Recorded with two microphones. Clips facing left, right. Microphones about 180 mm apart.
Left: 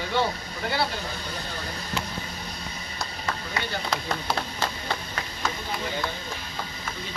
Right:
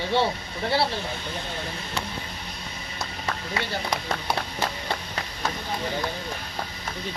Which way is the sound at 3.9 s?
20° right (ahead or behind).